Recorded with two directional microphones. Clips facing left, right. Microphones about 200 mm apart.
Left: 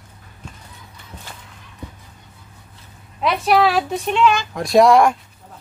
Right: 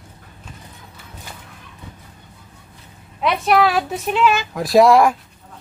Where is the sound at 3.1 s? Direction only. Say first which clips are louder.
Even; centre (ahead or behind).